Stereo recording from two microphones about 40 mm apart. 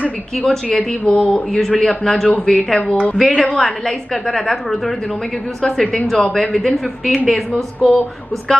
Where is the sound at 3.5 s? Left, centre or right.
Centre.